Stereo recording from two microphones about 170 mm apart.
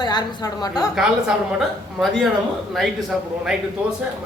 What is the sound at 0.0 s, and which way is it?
Speech, 25° left (ahead or behind).